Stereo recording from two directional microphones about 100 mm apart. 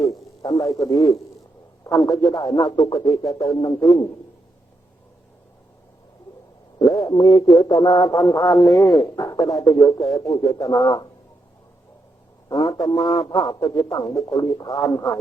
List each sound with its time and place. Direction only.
0.0 s a sound: 35° left (ahead or behind)
0.7 s a man's voice: 40° left (ahead or behind)
6.7 s speech: 40° left (ahead or behind)
12.8 s a man's voice: 40° left (ahead or behind)